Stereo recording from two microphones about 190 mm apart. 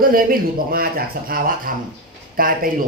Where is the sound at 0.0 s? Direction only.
50° right (ahead or behind).